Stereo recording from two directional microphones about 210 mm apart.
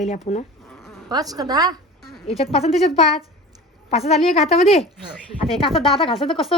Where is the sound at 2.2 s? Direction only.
30° left (ahead or behind).